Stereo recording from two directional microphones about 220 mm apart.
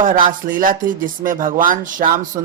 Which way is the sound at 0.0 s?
35° right (ahead or behind).